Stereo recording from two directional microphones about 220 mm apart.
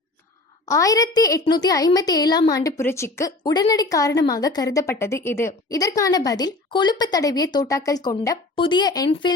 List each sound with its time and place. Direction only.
0.6 s a woman's voice: 15° left (ahead or behind)